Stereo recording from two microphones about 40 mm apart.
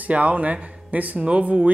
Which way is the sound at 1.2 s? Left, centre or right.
Right.